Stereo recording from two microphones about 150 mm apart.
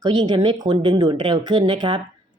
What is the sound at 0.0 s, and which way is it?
Speech, 30° right (ahead or behind).